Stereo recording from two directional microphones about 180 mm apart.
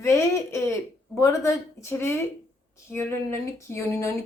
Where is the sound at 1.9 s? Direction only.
15° left (ahead or behind).